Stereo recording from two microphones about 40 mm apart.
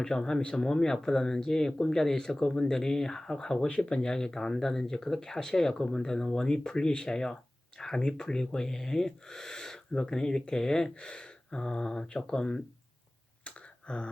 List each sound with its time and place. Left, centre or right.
0.0 s speech: centre
13.4 s throat clearing: left